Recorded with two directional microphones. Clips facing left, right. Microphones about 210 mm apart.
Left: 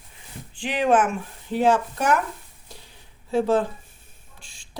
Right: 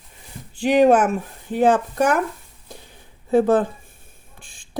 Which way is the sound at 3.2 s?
55° right (ahead or behind).